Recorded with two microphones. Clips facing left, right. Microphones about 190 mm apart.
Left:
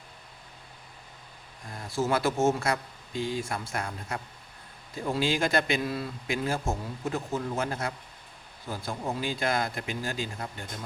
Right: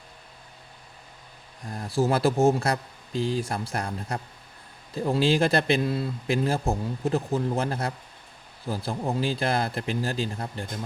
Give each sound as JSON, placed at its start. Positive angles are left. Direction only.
{"t": 1.7, "sound": "speech", "side_deg": -35}